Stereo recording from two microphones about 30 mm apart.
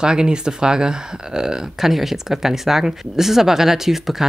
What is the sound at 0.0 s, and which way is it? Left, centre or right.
Speech, right.